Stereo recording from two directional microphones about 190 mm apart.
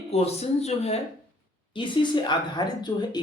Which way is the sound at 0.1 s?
35° left (ahead or behind).